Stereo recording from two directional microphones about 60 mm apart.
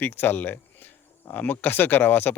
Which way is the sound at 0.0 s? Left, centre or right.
Left.